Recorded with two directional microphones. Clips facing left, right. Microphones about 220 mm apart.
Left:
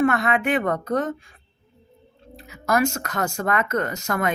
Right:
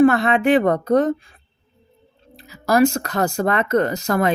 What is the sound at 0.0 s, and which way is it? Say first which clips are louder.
Speech: right 6 dB; 30° right (ahead or behind).